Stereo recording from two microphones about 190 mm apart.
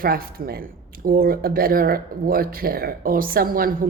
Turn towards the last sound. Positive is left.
turn(degrees=-50)  # may be behind; listen again after turning